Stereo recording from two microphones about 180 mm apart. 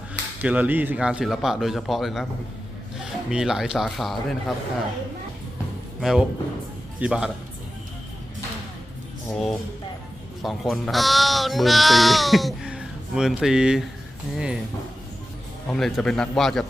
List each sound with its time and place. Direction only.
0.4 s speech: 10° right (ahead or behind)
6.0 s speech: centre (ahead or behind)
9.3 s speech: centre (ahead or behind)
15.7 s speech: centre (ahead or behind)